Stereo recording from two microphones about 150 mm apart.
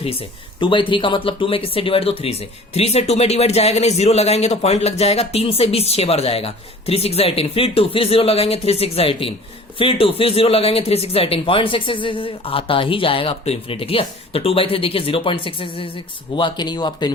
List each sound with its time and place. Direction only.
0.0 s speech: 40° left (ahead or behind)